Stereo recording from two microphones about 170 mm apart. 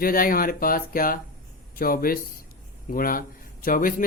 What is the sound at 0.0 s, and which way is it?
A man's voice, 55° left (ahead or behind).